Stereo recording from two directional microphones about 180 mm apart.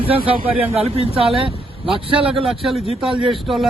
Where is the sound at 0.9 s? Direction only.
30° right (ahead or behind).